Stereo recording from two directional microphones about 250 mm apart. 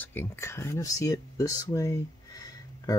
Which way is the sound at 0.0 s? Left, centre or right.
Centre.